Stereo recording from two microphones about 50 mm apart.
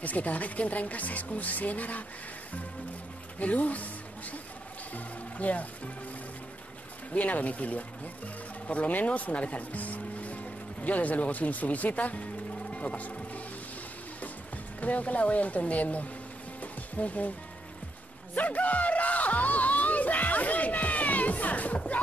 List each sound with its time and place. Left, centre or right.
0.0 s speech: left
3.3 s speech: left
7.1 s speech: left
14.8 s speech: left
18.3 s music: left